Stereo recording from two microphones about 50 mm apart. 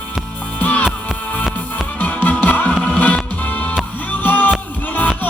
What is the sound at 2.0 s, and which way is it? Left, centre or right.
Music, left.